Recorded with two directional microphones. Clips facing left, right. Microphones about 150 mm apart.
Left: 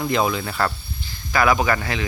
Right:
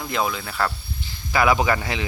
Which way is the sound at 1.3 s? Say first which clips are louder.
Even; 20° right (ahead or behind).